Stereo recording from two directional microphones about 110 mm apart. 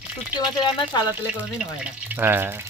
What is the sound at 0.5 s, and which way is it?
Speech, 45° left (ahead or behind).